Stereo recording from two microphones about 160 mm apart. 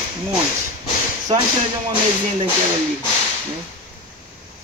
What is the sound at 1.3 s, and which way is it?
Speech, 35° right (ahead or behind).